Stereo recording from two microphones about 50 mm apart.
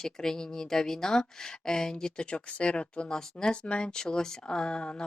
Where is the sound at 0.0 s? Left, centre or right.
Centre.